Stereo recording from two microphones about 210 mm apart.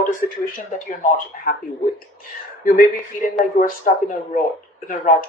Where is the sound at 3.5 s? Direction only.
40° left (ahead or behind).